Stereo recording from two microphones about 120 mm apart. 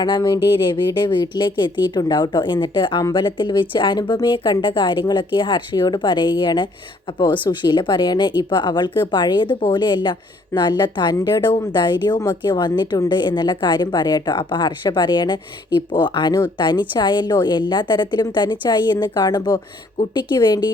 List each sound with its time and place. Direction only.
0.0 s a woman's voice: 35° left (ahead or behind)